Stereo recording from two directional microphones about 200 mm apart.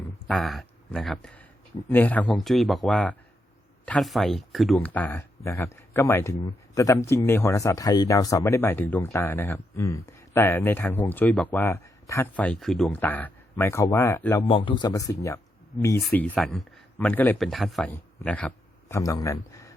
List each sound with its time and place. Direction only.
0.3 s speech: centre (ahead or behind)
14.4 s speech: 25° left (ahead or behind)
16.0 s speech: 5° left (ahead or behind)